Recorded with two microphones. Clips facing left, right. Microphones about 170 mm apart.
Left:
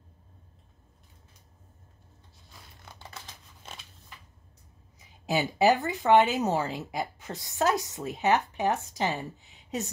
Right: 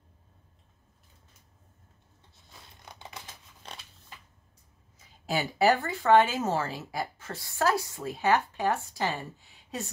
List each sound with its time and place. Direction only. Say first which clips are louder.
2.6 s a sound: right 1 dB; 20° right (ahead or behind)
3.6 s scissors: right 1 dB; 5° left (ahead or behind)
4.9 s a woman's voice: left 2 dB; 20° left (ahead or behind)